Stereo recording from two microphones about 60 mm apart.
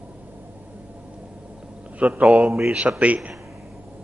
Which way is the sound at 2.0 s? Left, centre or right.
Right.